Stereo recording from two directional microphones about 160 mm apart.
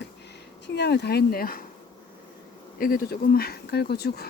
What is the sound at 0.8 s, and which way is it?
Speech, 90° left.